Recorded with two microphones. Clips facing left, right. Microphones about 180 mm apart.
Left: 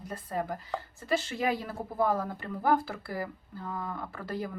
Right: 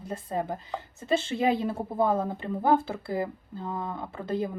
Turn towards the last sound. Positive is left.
turn(degrees=-20)  # may be behind; listen again after turning